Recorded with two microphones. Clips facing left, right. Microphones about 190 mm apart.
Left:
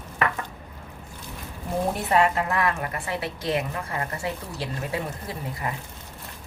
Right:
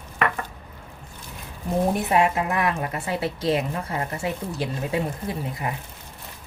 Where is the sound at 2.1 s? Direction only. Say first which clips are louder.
Right 1 dB; 10° right (ahead or behind).